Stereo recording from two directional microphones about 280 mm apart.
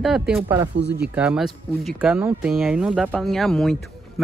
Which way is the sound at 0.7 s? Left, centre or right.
Right.